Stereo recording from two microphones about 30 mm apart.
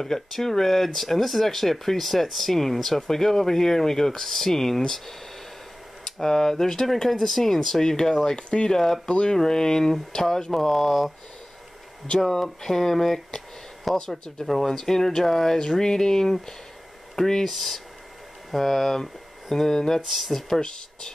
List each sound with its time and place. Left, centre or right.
0.0 s speech: centre
8.3 s speech: left
8.6 s speech: centre
12.3 s speech: centre
13.9 s speech: left
14.4 s speech: centre
15.6 s speech: left
17.5 s speech: centre
20.1 s speech: centre